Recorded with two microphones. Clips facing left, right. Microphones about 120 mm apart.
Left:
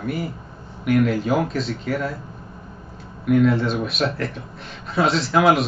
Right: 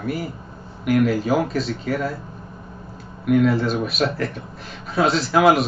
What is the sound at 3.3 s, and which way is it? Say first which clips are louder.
Speech: even; centre (ahead or behind).